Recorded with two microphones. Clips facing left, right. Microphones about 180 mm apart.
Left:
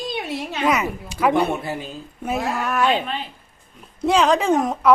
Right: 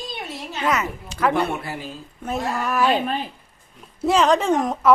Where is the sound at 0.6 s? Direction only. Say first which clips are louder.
Left 2 dB; 15° left (ahead or behind).